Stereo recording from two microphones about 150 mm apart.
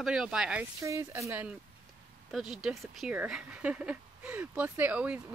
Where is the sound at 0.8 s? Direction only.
20° right (ahead or behind).